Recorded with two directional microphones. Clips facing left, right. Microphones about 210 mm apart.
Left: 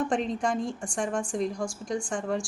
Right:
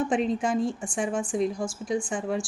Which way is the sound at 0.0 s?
5° right (ahead or behind).